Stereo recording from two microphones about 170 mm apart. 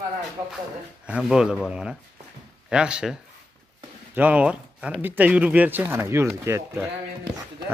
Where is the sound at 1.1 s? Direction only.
5° right (ahead or behind).